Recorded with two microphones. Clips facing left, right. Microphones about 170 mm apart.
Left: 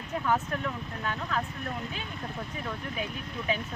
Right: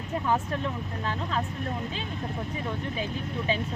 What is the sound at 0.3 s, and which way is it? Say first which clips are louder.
Speech: right 1 dB; 25° right (ahead or behind).